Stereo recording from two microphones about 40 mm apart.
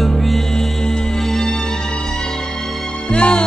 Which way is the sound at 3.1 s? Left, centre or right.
Left.